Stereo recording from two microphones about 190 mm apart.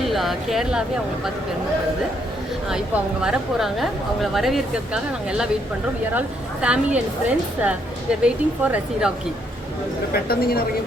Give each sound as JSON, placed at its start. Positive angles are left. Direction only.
{"t": 0.0, "sound": "speech", "side_deg": 0}
{"t": 2.6, "sound": "a woman's voice", "side_deg": -5}
{"t": 6.1, "sound": "a woman's voice", "side_deg": -5}
{"t": 10.1, "sound": "speech", "side_deg": 55}